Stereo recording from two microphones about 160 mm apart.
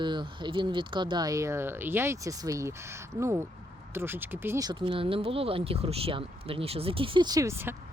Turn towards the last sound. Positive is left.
turn(degrees=-15)  # may be behind; listen again after turning